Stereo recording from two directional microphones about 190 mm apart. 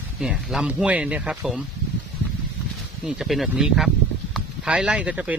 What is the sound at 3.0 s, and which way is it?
Speech, centre (ahead or behind).